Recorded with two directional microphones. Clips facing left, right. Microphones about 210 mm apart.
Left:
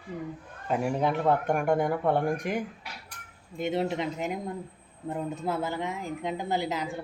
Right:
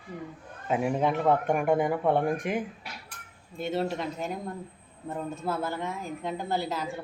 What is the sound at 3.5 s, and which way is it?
A woman's voice, 20° left (ahead or behind).